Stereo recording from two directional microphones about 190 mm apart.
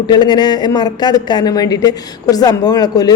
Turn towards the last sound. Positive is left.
turn(degrees=20)  # may be behind; listen again after turning